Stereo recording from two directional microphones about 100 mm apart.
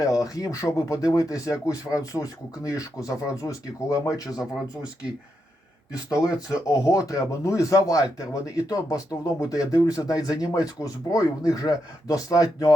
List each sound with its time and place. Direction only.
0.0 s speech: 35° left (ahead or behind)
5.9 s speech: 35° left (ahead or behind)